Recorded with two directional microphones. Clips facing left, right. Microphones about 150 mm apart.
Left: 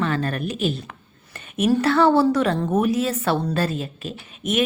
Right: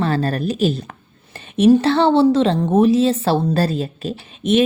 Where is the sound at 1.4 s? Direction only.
30° right (ahead or behind).